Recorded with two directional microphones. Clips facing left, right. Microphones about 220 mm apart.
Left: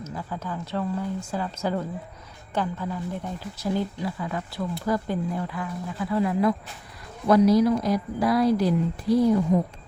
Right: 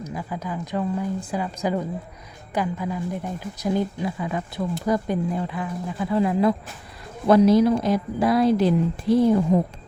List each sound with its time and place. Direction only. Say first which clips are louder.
0.0 s a woman's voice: right 3 dB; 15° right (ahead or behind); by 9.7 s 30° right (ahead or behind)